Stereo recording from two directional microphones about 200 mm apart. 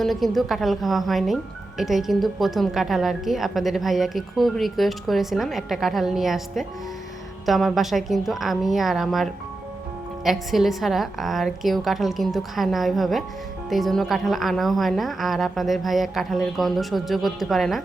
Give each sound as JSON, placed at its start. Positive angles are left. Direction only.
{"t": 0.0, "sound": "a woman's voice", "side_deg": 0}